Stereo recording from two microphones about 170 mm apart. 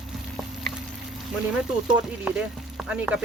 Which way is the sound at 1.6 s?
5° right (ahead or behind).